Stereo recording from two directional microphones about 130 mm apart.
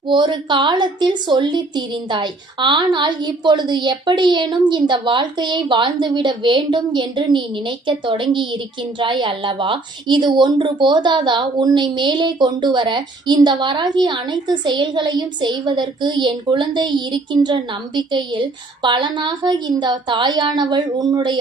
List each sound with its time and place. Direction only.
0.1 s a woman's voice: 35° right (ahead or behind)